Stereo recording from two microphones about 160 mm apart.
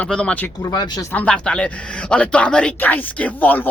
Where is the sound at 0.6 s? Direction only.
25° left (ahead or behind).